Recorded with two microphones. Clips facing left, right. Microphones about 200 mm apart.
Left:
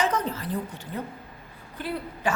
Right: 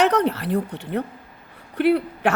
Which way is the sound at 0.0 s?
70° right (ahead or behind).